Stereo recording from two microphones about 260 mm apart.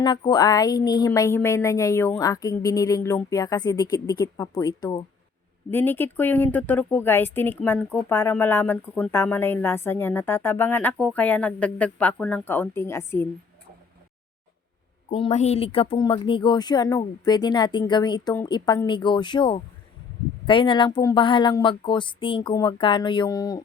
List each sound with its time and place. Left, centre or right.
0.0 s a woman's voice: centre
15.1 s a woman's voice: left